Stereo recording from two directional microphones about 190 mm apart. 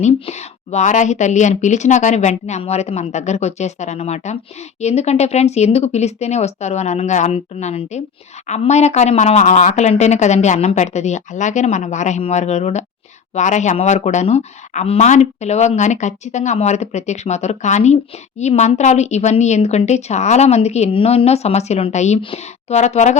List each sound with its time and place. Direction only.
0.0 s speech: 35° left (ahead or behind)